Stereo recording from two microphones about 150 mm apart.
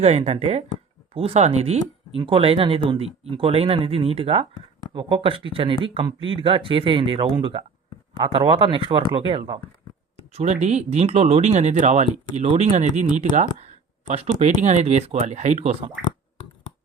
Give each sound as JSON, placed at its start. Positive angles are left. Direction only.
{"t": 0.0, "sound": "speech", "side_deg": -45}
{"t": 10.3, "sound": "speech", "side_deg": -50}